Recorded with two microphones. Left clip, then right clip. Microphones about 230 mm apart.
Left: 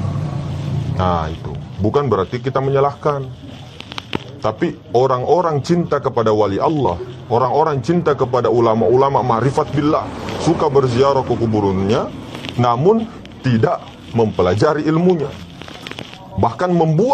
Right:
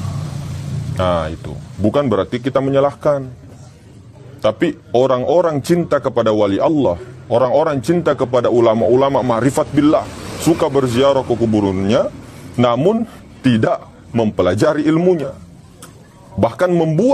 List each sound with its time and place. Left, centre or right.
0.9 s a man's voice: right
4.4 s a man's voice: right
16.3 s a man's voice: right